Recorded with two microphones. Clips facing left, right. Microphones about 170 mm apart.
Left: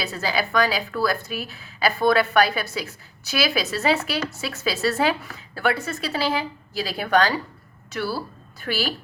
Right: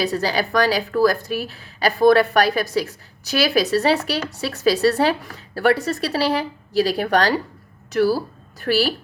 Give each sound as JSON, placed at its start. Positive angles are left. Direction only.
{"t": 0.0, "sound": "speech", "side_deg": -35}